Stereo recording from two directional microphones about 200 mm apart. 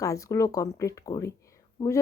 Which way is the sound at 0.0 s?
15° left (ahead or behind).